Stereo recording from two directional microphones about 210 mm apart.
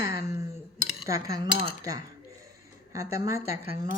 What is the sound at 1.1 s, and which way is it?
Speech, 15° right (ahead or behind).